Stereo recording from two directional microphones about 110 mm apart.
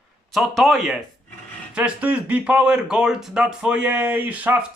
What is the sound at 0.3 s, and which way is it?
Speech, centre (ahead or behind).